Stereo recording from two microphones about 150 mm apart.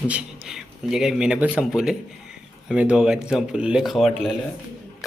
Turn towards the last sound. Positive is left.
turn(degrees=-5)  # may be behind; listen again after turning